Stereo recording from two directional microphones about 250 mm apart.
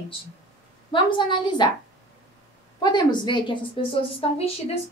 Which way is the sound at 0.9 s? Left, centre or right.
Centre.